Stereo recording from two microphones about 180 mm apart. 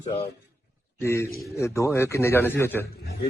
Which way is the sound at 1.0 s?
15° left (ahead or behind).